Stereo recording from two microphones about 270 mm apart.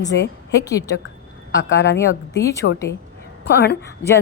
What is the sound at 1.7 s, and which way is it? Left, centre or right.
A woman's voice, left.